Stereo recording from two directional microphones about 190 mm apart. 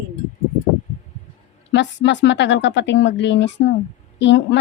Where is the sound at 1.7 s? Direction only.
70° left (ahead or behind).